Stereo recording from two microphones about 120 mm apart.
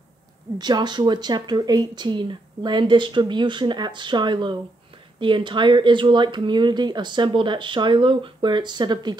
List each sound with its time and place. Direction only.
0.6 s speech: 35° right (ahead or behind)